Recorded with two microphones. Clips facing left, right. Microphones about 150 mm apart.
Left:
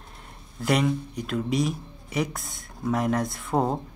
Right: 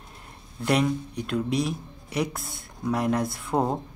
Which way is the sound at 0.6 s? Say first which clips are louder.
Even; centre (ahead or behind).